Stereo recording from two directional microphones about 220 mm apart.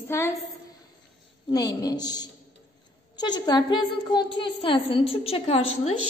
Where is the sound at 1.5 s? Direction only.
15° left (ahead or behind).